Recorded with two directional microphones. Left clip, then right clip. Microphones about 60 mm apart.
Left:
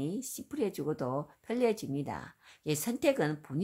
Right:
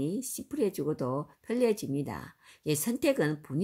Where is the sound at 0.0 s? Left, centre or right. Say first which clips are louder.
Right 3 dB; left.